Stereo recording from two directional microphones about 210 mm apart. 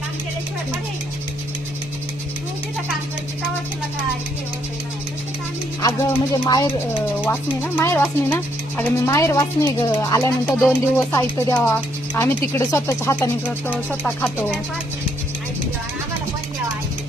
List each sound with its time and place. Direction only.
6.4 s speech: 20° left (ahead or behind)